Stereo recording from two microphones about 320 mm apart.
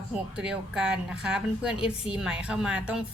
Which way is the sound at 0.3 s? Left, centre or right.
Centre.